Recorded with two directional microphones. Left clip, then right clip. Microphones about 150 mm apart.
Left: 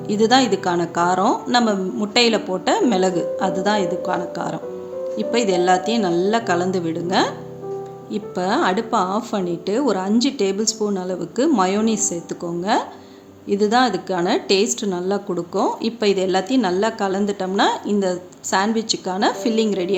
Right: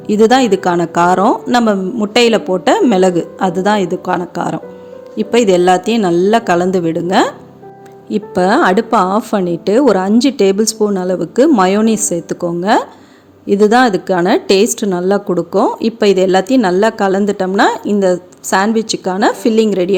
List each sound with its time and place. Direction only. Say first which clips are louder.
0.1 s speech: right 7 dB; 50° right (ahead or behind)